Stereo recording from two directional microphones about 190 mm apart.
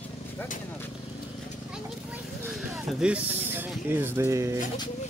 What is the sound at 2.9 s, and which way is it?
Speech, 5° right (ahead or behind).